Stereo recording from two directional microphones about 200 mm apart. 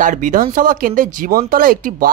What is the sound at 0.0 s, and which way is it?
Speech, 40° right (ahead or behind).